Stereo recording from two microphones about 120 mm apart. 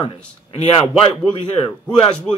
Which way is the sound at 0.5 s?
55° left (ahead or behind).